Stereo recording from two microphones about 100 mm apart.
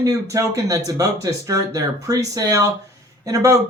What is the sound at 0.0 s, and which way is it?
Speech, 35° right (ahead or behind).